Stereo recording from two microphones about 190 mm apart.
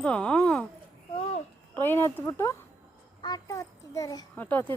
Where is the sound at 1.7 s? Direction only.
10° left (ahead or behind).